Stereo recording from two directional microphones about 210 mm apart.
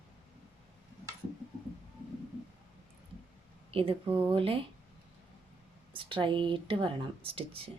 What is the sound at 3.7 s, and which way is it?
Speech, 25° right (ahead or behind).